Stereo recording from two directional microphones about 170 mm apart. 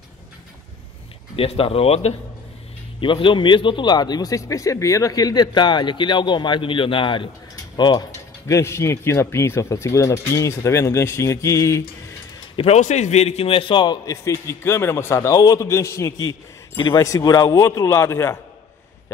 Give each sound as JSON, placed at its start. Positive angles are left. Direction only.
{"t": 1.3, "sound": "a man's voice", "side_deg": 35}
{"t": 7.7, "sound": "mechanisms", "side_deg": 25}
{"t": 8.5, "sound": "speech", "side_deg": 15}
{"t": 12.5, "sound": "a man's voice", "side_deg": 40}